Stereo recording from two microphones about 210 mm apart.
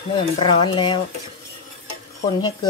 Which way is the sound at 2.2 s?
20° left (ahead or behind).